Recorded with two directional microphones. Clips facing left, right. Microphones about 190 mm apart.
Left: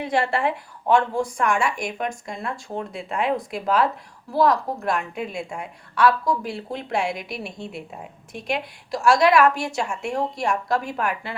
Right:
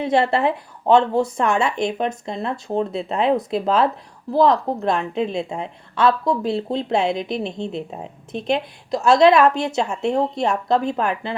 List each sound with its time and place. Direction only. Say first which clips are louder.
0.0 s a woman's voice: right 4 dB; 20° right (ahead or behind)